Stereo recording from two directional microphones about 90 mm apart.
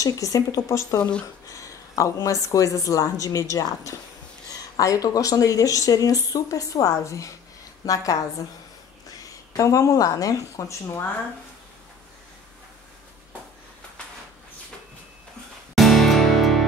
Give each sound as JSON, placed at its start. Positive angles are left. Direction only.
{"t": 0.0, "sound": "speech", "side_deg": 40}
{"t": 9.2, "sound": "a woman's voice", "side_deg": 40}
{"t": 15.7, "sound": "music", "side_deg": 0}